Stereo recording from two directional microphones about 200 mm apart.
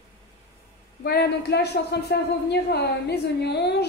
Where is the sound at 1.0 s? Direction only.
50° left (ahead or behind).